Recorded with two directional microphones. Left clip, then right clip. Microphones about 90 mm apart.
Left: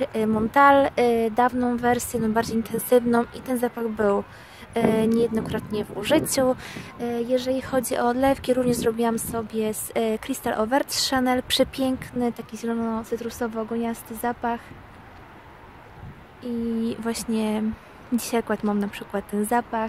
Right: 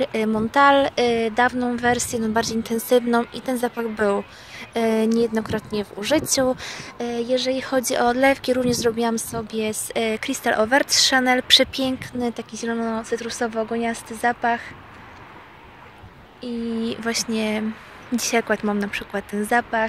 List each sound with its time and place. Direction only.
0.0 s a woman's voice: 45° left (ahead or behind)
16.4 s a woman's voice: 50° left (ahead or behind)